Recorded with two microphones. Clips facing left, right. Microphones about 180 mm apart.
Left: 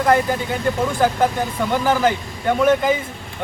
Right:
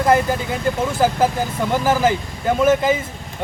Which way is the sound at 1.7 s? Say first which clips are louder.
Right 1 dB; 5° right (ahead or behind).